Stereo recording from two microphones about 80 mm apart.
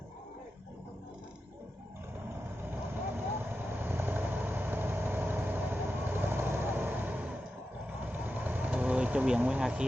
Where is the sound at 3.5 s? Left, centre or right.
Right.